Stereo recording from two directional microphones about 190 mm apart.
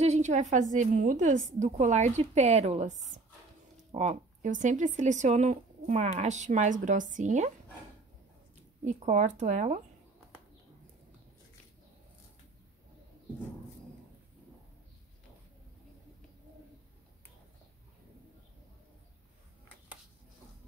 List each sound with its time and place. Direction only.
0.0 s speech: 35° right (ahead or behind)
8.8 s speech: 40° right (ahead or behind)